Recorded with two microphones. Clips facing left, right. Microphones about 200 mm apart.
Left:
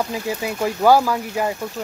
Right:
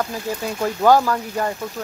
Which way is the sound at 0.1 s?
10° left (ahead or behind).